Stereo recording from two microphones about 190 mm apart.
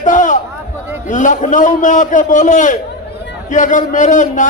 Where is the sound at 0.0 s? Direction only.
40° left (ahead or behind).